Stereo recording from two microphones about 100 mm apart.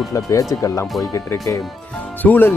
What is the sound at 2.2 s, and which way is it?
Speech, 20° left (ahead or behind).